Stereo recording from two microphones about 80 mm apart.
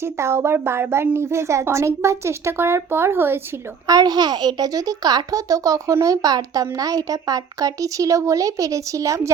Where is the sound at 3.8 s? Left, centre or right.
Right.